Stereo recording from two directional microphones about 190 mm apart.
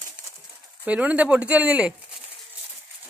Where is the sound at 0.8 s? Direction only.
5° right (ahead or behind).